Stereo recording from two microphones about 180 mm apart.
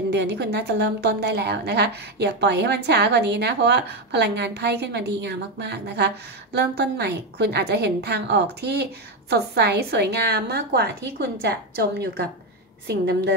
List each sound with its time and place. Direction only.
0.1 s a woman's voice: 70° right (ahead or behind)